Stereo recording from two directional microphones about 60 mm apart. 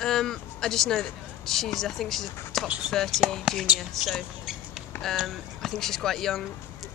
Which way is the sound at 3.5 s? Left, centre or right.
Centre.